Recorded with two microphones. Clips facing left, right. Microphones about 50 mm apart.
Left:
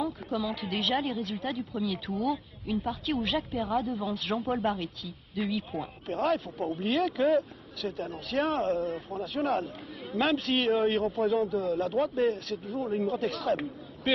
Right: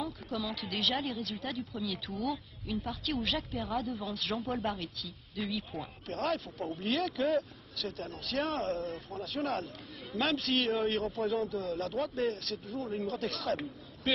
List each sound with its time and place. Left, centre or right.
0.0 s speech: centre
0.9 s speech: centre
1.9 s speech: left
2.2 s speech: centre
3.3 s speech: centre
10.4 s speech: centre
11.2 s speech: centre